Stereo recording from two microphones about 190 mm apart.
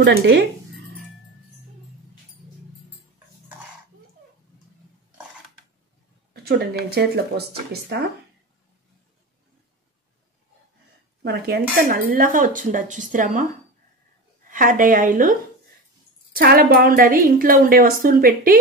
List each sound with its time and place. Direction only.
0.0 s a sound: 65° right (ahead or behind)
6.3 s speech: 55° right (ahead or behind)
11.2 s speech: 55° right (ahead or behind)
14.5 s speech: 45° right (ahead or behind)
16.3 s speech: 50° right (ahead or behind)